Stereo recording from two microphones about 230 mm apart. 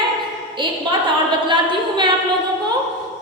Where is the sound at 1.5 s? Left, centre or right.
Centre.